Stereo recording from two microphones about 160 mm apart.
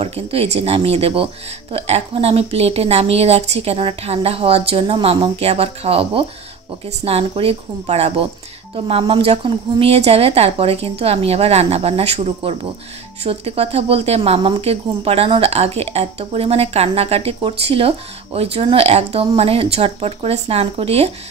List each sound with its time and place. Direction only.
0.0 s speech: 40° right (ahead or behind)